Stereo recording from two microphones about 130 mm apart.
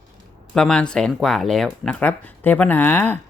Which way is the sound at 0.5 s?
5° left (ahead or behind).